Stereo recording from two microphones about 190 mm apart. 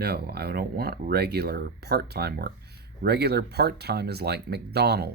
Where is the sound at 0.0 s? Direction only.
55° right (ahead or behind).